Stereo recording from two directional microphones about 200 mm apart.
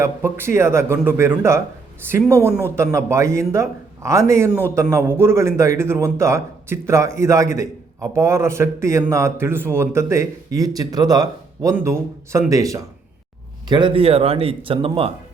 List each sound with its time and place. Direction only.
0.0 s a man's voice: 10° right (ahead or behind); by 15.1 s 30° right (ahead or behind)